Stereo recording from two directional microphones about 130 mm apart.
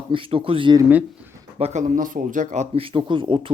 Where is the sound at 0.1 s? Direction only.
45° right (ahead or behind).